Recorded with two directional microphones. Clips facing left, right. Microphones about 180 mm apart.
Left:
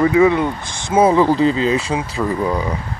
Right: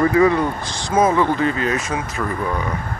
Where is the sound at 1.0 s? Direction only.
30° left (ahead or behind).